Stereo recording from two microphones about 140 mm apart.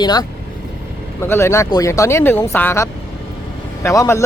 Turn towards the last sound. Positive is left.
turn(degrees=20)  # may be behind; listen again after turning